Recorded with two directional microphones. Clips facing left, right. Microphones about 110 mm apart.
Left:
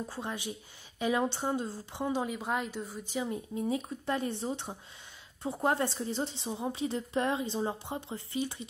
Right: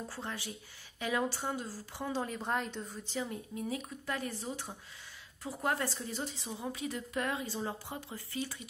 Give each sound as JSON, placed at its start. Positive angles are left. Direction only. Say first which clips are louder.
{"t": 0.1, "sound": "speech", "louder": "left 4 dB", "side_deg": 15}